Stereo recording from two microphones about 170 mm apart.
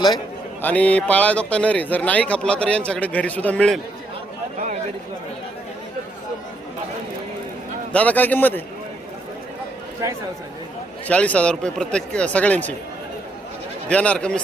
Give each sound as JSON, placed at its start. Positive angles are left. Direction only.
{"t": 0.6, "sound": "a man's voice", "side_deg": 10}
{"t": 7.9, "sound": "a man's voice", "side_deg": 10}
{"t": 10.0, "sound": "a man's voice", "side_deg": -20}
{"t": 11.1, "sound": "a man's voice", "side_deg": 5}
{"t": 13.9, "sound": "a man's voice", "side_deg": 5}